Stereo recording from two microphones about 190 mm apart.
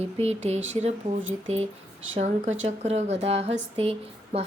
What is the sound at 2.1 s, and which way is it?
A woman's voice, 40° right (ahead or behind).